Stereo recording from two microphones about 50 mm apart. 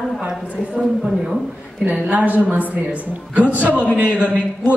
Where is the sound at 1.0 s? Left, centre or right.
Centre.